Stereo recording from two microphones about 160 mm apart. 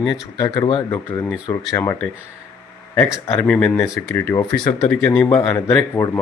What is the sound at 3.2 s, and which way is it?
A man's voice, 15° left (ahead or behind).